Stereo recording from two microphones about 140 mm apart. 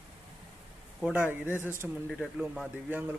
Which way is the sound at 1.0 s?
10° right (ahead or behind).